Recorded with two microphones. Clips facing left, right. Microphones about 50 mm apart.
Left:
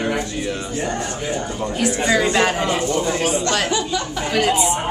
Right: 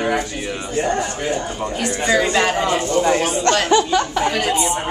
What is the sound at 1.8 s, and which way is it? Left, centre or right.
Speech, centre.